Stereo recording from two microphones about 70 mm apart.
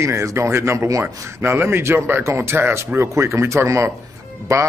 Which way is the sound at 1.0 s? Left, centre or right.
Right.